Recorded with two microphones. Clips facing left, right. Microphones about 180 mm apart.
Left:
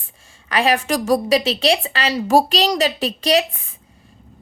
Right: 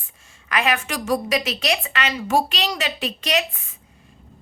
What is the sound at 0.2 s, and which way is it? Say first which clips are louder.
A woman's voice: left 4 dB; 30° left (ahead or behind).